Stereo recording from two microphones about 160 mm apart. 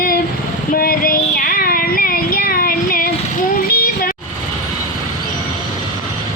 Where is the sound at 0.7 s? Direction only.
65° left (ahead or behind).